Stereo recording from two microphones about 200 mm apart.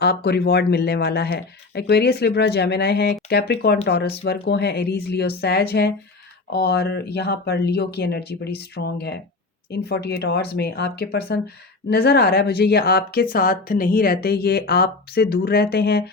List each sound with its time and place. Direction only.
0.0 s speech: 55° left (ahead or behind)